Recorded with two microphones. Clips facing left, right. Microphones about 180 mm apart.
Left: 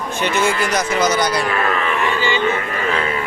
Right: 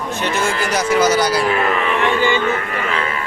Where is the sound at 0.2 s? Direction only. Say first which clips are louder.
Left 2 dB; centre (ahead or behind).